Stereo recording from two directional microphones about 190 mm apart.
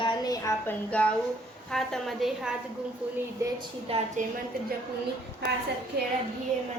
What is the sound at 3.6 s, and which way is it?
Speech, 30° right (ahead or behind).